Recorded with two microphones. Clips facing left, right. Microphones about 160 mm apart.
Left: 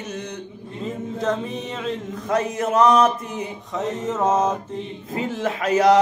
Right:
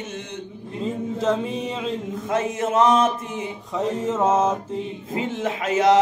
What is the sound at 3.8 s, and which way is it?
Mantra, 10° right (ahead or behind).